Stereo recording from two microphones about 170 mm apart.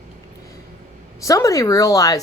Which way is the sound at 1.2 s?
20° left (ahead or behind).